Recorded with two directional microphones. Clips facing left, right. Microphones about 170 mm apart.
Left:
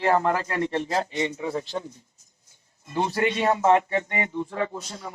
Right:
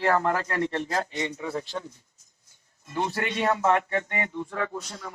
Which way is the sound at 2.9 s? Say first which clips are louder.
Left 4 dB; 20° left (ahead or behind).